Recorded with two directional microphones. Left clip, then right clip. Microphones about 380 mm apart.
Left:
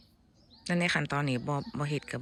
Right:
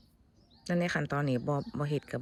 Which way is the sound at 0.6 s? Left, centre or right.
Centre.